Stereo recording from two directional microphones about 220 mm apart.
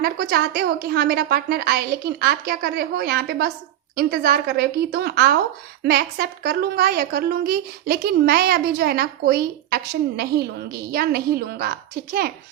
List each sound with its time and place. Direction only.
0.0 s a woman's voice: 45° right (ahead or behind)